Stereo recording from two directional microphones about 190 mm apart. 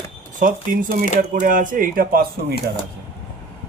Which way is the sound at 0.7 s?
45° right (ahead or behind).